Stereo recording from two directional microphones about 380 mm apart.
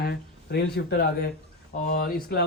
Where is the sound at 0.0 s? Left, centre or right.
Left.